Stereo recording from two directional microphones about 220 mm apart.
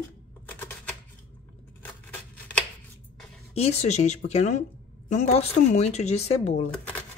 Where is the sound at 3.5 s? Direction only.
30° left (ahead or behind).